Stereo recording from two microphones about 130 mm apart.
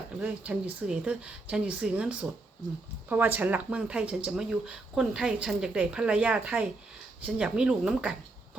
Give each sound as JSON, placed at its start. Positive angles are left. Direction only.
{"t": 0.2, "sound": "speech", "side_deg": -10}